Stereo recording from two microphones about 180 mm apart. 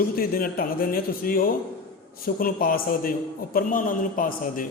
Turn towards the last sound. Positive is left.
turn(degrees=50)  # may be behind; listen again after turning